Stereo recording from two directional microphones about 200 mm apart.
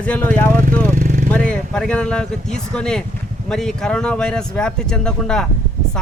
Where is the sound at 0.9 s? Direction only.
40° right (ahead or behind).